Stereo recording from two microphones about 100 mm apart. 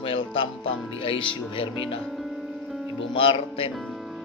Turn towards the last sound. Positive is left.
turn(degrees=65)  # may be behind; listen again after turning